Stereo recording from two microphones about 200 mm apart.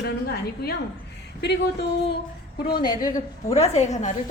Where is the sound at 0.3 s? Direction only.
50° left (ahead or behind).